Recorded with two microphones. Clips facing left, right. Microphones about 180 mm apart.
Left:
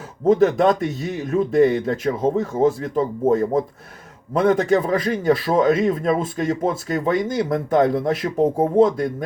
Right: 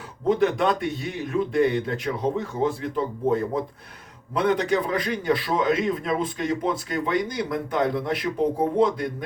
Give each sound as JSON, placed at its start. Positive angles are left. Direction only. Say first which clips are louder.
{"t": 0.3, "sound": "a man's voice", "louder": "left 6 dB", "side_deg": 40}